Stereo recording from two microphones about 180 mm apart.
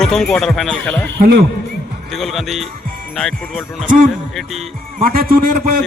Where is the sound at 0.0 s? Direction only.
Centre (ahead or behind).